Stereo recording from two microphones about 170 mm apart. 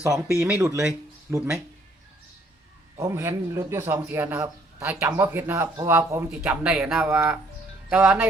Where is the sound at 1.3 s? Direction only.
5° right (ahead or behind).